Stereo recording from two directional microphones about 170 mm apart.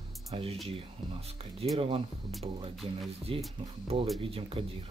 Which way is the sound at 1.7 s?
35° right (ahead or behind).